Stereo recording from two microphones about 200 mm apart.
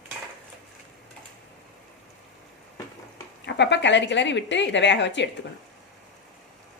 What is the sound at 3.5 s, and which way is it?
A woman's voice, 60° left (ahead or behind).